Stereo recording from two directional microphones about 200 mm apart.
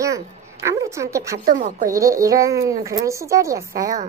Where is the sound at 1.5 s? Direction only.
40° right (ahead or behind).